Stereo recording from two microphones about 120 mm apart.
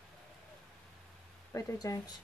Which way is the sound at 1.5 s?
30° left (ahead or behind).